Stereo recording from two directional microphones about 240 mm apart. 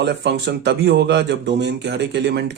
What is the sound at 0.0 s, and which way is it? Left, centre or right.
A man's voice, right.